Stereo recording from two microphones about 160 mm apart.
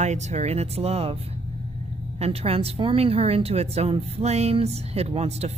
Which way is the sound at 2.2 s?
40° right (ahead or behind).